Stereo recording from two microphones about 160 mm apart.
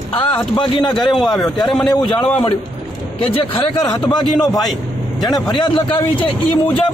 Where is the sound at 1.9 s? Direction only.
30° left (ahead or behind).